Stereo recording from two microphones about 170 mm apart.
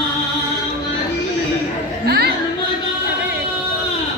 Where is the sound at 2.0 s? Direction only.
70° right (ahead or behind).